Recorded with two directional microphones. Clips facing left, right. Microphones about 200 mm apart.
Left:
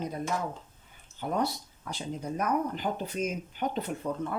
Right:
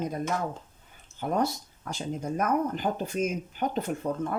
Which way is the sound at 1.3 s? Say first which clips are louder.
Right 3 dB; 45° right (ahead or behind).